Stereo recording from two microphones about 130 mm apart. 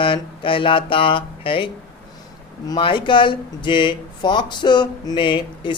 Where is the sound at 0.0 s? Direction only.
40° left (ahead or behind).